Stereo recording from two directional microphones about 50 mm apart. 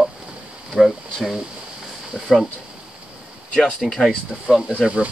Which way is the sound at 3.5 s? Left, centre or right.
Centre.